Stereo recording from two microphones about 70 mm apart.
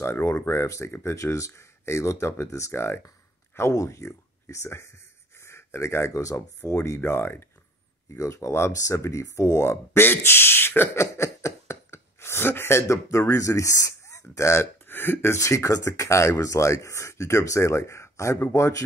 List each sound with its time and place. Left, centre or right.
0.0 s speech: left
8.2 s speech: left
15.3 s speech: left